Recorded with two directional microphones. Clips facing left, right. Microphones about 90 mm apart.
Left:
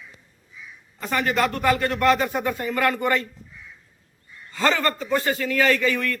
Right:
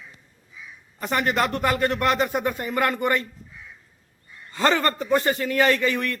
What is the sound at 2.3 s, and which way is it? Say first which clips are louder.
Speech: even; 20° right (ahead or behind).